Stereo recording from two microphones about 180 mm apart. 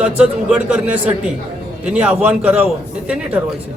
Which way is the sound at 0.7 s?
5° right (ahead or behind).